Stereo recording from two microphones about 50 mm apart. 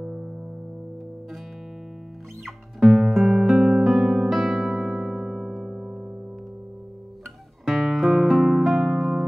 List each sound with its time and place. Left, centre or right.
0.0 s music: centre
2.4 s music: centre
4.8 s music: centre
7.6 s music: centre